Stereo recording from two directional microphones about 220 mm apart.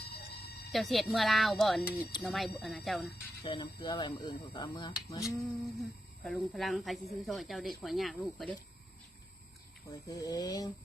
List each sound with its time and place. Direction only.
0.7 s speech: centre (ahead or behind)
3.4 s speech: 20° left (ahead or behind)
5.4 s speech: centre (ahead or behind)
10.1 s speech: 15° left (ahead or behind)